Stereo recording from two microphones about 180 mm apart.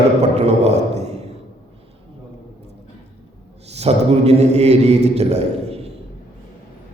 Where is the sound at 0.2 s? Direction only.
35° right (ahead or behind).